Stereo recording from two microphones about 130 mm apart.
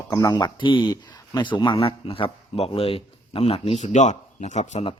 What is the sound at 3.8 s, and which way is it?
Speech, 65° left (ahead or behind).